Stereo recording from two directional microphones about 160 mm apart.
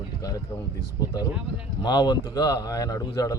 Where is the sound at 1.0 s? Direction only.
25° left (ahead or behind).